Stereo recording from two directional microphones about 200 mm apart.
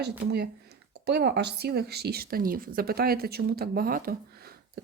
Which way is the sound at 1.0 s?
55° right (ahead or behind).